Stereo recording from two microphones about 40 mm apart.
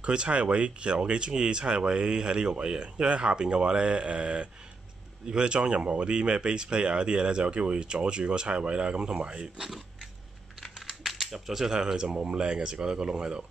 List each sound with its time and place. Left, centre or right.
0.0 s speech: right
10.6 s speech: centre; by 13.5 s right